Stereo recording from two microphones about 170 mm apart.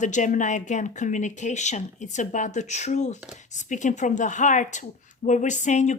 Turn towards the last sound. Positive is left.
turn(degrees=45)  # may be behind; listen again after turning